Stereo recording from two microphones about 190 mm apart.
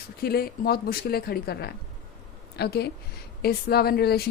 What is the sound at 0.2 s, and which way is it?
Speech, 55° left (ahead or behind).